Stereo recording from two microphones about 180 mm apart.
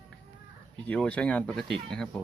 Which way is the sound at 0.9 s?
5° left (ahead or behind).